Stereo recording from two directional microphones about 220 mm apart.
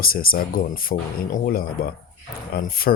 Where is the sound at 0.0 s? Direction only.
40° left (ahead or behind).